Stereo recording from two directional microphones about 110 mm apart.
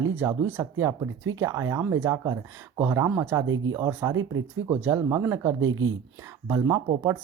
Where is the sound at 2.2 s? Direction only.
35° right (ahead or behind).